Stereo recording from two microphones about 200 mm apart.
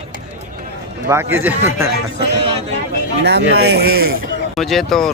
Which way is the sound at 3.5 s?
55° right (ahead or behind).